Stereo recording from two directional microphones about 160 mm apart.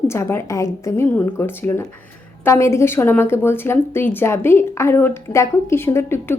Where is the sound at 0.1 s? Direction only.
15° left (ahead or behind).